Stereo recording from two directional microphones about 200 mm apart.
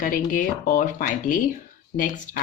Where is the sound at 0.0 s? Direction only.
45° left (ahead or behind).